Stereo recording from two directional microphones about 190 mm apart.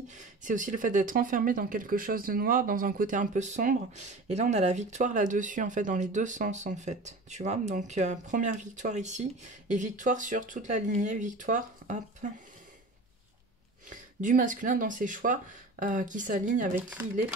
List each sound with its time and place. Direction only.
0.1 s speech: 40° right (ahead or behind)
13.8 s speech: 45° right (ahead or behind)